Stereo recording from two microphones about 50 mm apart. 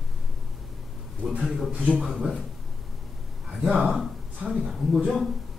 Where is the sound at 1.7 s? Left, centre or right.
Right.